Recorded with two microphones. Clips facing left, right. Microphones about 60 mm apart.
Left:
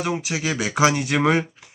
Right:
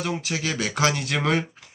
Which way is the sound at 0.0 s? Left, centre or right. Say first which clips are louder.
Left 3 dB; centre.